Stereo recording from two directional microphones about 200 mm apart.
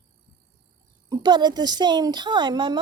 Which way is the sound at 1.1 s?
20° right (ahead or behind).